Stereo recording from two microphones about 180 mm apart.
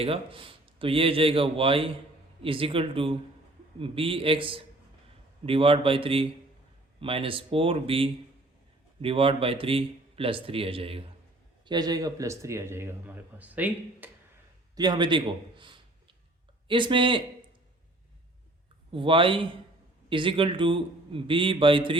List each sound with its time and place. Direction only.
0.0 s a man's voice: 30° right (ahead or behind); by 14.1 s 10° right (ahead or behind)
14.8 s a man's voice: 25° right (ahead or behind)
18.9 s a man's voice: 30° right (ahead or behind)